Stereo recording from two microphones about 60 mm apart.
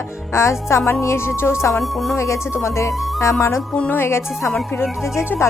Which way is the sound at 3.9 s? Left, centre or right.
Left.